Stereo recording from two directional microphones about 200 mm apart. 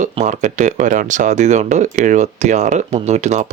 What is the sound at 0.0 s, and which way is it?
Speech, 35° right (ahead or behind).